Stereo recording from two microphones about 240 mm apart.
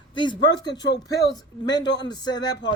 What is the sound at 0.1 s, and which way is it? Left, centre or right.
A woman's voice, centre.